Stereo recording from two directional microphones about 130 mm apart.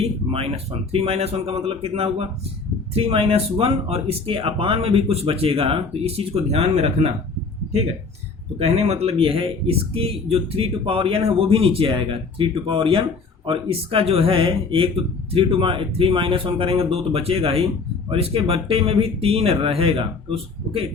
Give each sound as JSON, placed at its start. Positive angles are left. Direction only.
{"t": 0.0, "sound": "a man's voice", "side_deg": -45}
{"t": 8.5, "sound": "a man's voice", "side_deg": -50}